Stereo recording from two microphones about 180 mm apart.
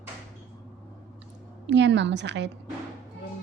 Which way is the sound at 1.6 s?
80° right.